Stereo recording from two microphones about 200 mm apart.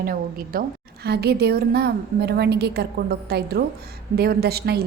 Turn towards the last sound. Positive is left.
turn(degrees=-50)  # may be behind; listen again after turning